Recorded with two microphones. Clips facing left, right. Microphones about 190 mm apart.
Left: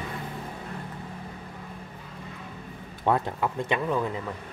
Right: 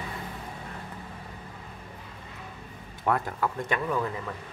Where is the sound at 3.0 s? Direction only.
20° left (ahead or behind).